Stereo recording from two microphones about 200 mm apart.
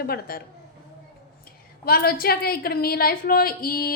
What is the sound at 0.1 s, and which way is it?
Speech, 50° left (ahead or behind).